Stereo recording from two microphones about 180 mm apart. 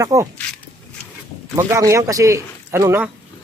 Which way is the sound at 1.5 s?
15° right (ahead or behind).